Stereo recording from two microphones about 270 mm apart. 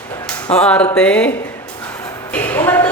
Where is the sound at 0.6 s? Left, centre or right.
Centre.